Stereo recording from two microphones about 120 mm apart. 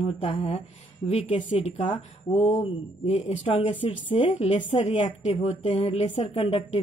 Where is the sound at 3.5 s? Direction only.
45° left (ahead or behind).